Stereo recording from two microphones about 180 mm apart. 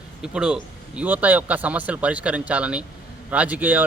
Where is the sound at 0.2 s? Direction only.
5° right (ahead or behind).